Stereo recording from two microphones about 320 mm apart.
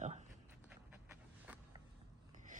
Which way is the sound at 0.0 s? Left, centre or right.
Right.